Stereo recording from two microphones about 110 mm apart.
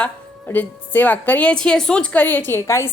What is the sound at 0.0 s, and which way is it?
A woman's voice, 15° left (ahead or behind).